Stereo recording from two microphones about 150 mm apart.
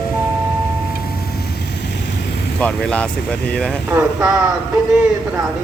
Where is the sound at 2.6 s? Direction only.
5° left (ahead or behind).